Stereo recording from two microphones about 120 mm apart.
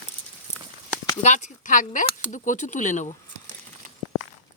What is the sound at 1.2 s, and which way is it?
Speech, 80° left.